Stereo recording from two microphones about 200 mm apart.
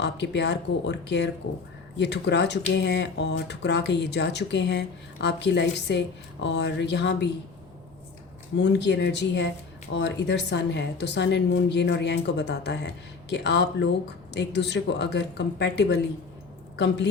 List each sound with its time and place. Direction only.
0.0 s speech: 60° left (ahead or behind)
8.5 s a woman's voice: 60° left (ahead or behind)